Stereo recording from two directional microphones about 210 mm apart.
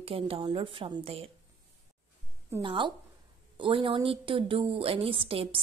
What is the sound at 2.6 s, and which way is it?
A woman's voice, 20° right (ahead or behind).